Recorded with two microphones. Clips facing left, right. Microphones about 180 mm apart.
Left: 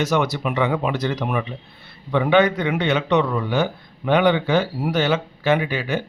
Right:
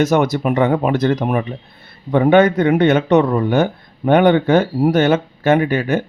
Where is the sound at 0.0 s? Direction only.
50° right (ahead or behind).